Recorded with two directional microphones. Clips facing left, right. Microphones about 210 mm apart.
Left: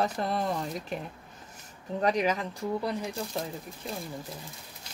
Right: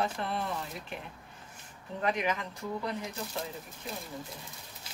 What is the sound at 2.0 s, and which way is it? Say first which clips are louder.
Speech: left 5 dB; 35° left (ahead or behind).